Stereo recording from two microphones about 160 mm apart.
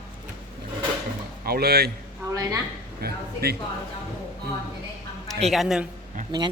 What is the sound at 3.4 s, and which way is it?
Speech, 75° right (ahead or behind).